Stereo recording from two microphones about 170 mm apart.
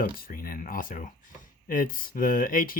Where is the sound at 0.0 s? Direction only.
55° left (ahead or behind).